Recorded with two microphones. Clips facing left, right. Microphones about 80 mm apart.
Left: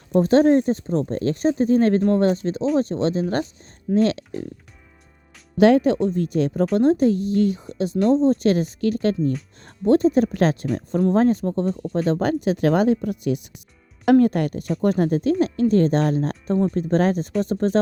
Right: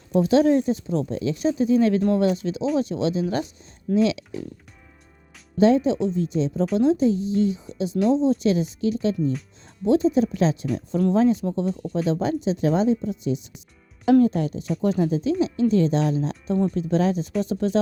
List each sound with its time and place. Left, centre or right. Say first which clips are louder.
0.1 s speech: left 2 dB; left
5.5 s speech: left 3 dB; left
11.7 s speech: left 2 dB; centre
12.2 s speech: left 3 dB; left